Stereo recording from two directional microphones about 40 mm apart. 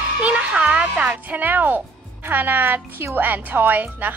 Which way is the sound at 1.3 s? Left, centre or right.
Right.